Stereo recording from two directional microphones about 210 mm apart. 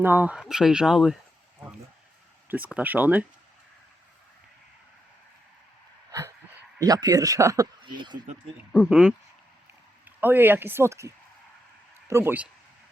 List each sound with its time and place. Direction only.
0.0 s speech: 10° right (ahead or behind)
2.5 s speech: 5° right (ahead or behind)
6.1 s a sound: 15° right (ahead or behind)
6.7 s speech: 15° right (ahead or behind)
8.8 s speech: 5° right (ahead or behind)
10.2 s speech: 10° right (ahead or behind)